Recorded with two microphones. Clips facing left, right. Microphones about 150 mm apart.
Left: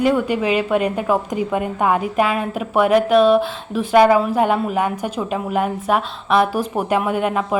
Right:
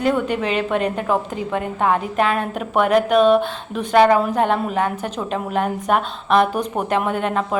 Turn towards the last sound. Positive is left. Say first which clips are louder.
# left 2 dB
turn(degrees=10)  # may be behind; listen again after turning